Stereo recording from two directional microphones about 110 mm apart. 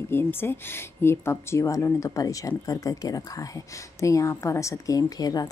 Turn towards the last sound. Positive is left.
turn(degrees=35)  # may be behind; listen again after turning